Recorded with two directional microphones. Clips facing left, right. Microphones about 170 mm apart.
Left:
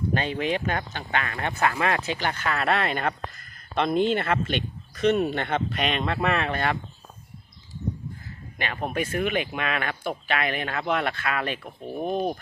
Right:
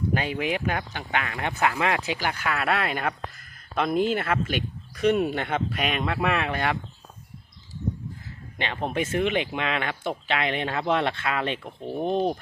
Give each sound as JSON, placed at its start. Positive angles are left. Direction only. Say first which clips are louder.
{"t": 0.1, "sound": "speech", "louder": "left 2 dB", "side_deg": -10}
{"t": 8.5, "sound": "speech", "louder": "right 1 dB", "side_deg": -25}